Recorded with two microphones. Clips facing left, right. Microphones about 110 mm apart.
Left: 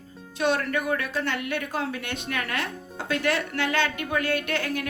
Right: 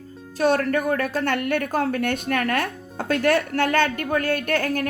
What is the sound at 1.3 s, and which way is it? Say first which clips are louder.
A woman's voice: right 6 dB; 55° right (ahead or behind).